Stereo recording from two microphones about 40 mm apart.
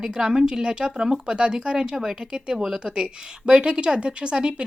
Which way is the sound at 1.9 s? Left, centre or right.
Centre.